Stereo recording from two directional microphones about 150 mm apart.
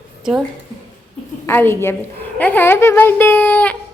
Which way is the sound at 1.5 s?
15° left (ahead or behind).